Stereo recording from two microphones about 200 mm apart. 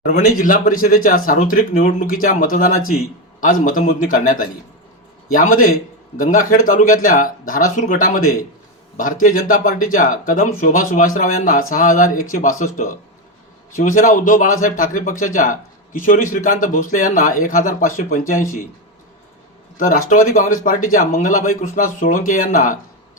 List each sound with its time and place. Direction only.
0.3 s speech: 45° left (ahead or behind)
20.2 s speech: 40° left (ahead or behind)